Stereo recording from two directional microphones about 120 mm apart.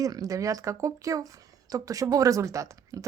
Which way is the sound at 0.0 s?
30° right (ahead or behind).